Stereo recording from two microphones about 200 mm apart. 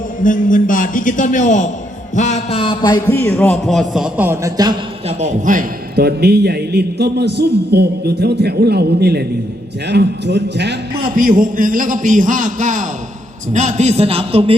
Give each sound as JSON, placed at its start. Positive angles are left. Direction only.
{"t": 0.2, "sound": "a man's voice", "side_deg": 40}
{"t": 2.1, "sound": "a sound", "side_deg": 35}
{"t": 3.1, "sound": "a man's voice", "side_deg": 10}
{"t": 5.0, "sound": "a man's voice", "side_deg": -35}